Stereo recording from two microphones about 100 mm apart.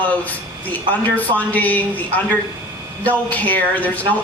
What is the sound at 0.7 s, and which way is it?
A woman's voice, 15° left (ahead or behind).